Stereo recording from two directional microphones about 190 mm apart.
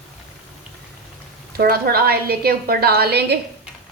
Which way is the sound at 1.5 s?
55° right (ahead or behind).